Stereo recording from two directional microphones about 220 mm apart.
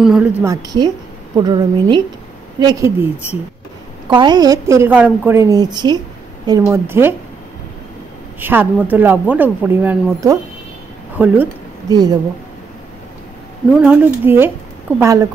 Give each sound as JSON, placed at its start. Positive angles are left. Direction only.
{"t": 0.0, "sound": "a woman's voice", "side_deg": -5}
{"t": 4.1, "sound": "speech", "side_deg": -20}
{"t": 8.4, "sound": "speech", "side_deg": -10}
{"t": 11.9, "sound": "speech", "side_deg": -20}
{"t": 13.7, "sound": "speech", "side_deg": -10}